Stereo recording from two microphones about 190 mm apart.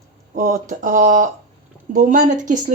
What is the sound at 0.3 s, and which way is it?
Speech, 40° right (ahead or behind).